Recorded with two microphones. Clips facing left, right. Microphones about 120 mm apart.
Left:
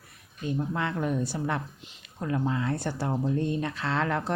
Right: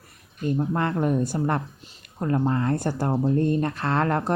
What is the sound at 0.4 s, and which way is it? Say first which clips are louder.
Speech: right 5 dB; 45° right (ahead or behind).